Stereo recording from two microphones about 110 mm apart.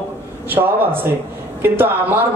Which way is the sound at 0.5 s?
20° right (ahead or behind).